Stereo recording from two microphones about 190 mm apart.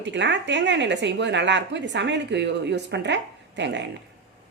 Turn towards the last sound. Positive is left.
turn(degrees=-65)  # may be behind; listen again after turning